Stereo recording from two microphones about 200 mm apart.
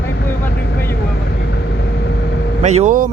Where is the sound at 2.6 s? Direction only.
35° right (ahead or behind).